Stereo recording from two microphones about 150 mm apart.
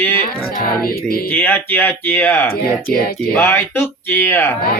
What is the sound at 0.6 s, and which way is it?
Music, 75° left (ahead or behind).